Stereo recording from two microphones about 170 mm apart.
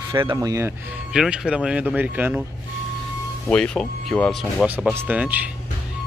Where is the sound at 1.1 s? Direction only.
5° right (ahead or behind).